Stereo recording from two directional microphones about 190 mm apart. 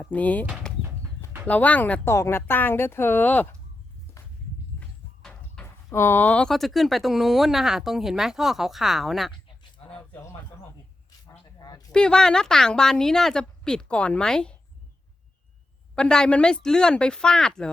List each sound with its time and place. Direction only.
0.0 s a woman's voice: 10° left (ahead or behind)
4.8 s speech: 5° left (ahead or behind)
9.9 s a sound: 10° left (ahead or behind)
11.6 s a sound: 20° left (ahead or behind)
11.9 s speech: 5° left (ahead or behind)
16.0 s speech: 5° left (ahead or behind)